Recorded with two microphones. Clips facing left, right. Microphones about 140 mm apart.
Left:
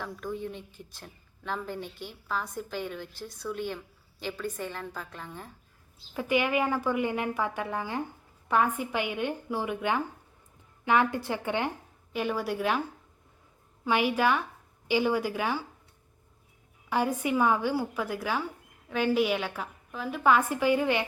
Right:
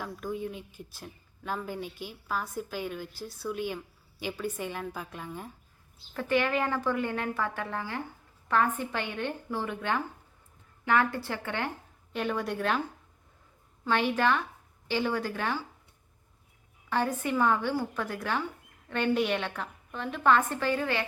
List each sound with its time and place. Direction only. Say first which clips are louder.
0.0 s a woman's voice: even; 5° right (ahead or behind)
6.1 s a woman's voice: left 1 dB; 10° left (ahead or behind)
12.1 s a woman's voice: left 1 dB; 5° left (ahead or behind)
13.8 s a woman's voice: left 1 dB; 10° left (ahead or behind)
16.9 s a woman's voice: left 2 dB; 10° left (ahead or behind)